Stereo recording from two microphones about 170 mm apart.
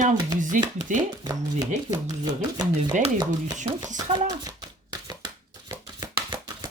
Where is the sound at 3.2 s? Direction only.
25° right (ahead or behind).